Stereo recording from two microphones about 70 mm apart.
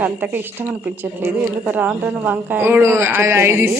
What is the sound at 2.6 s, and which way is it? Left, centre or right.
Speech, right.